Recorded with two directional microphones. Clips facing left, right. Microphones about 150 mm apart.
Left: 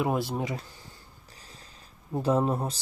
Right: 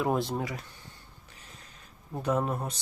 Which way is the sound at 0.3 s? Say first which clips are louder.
Left 2 dB; 25° left (ahead or behind).